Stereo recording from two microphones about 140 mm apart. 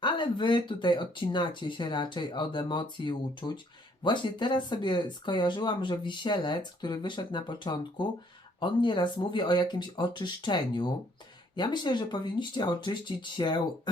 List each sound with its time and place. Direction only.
0.0 s speech: 35° left (ahead or behind)